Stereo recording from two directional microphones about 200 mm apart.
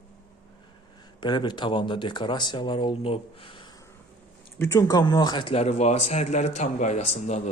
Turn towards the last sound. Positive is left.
turn(degrees=35)  # may be behind; listen again after turning